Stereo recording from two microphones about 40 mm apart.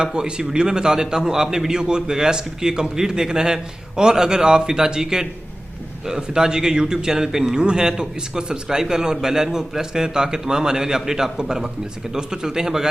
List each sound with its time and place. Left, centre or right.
0.0 s a man's voice: centre